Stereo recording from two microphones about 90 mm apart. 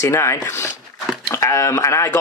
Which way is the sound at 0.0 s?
30° left (ahead or behind).